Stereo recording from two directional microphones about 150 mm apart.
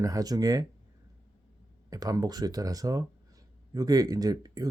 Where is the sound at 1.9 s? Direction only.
25° right (ahead or behind).